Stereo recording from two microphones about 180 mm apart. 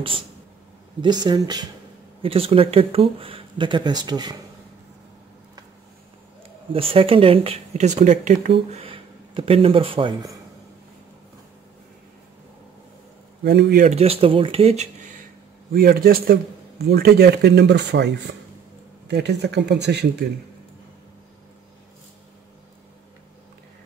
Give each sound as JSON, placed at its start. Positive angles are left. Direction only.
{"t": 1.0, "sound": "speech", "side_deg": -25}
{"t": 6.7, "sound": "speech", "side_deg": -30}
{"t": 13.4, "sound": "a man's voice", "side_deg": -60}
{"t": 13.8, "sound": "speech", "side_deg": -35}
{"t": 15.7, "sound": "a man's voice", "side_deg": -55}